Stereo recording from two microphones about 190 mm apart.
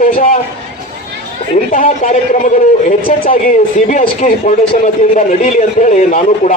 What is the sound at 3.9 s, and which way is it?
A man's voice, 40° left (ahead or behind).